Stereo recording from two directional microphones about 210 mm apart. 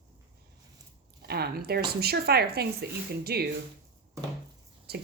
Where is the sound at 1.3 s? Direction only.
50° right (ahead or behind).